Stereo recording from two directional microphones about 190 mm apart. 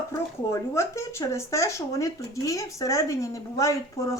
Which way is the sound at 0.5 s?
15° left (ahead or behind).